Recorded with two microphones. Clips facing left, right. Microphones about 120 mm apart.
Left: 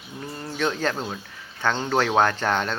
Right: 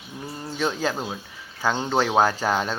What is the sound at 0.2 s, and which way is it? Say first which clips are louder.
Speech: even; 10° right (ahead or behind).